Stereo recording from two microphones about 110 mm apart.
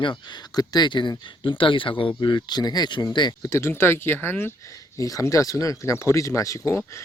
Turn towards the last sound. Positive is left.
turn(degrees=30)  # may be behind; listen again after turning